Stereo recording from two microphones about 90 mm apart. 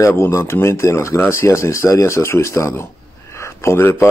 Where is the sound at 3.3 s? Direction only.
30° left (ahead or behind).